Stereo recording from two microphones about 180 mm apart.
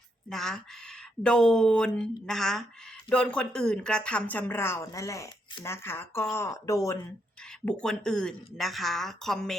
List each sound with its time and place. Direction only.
0.3 s speech: centre (ahead or behind); by 7.0 s 15° left (ahead or behind)
7.6 s speech: 5° left (ahead or behind)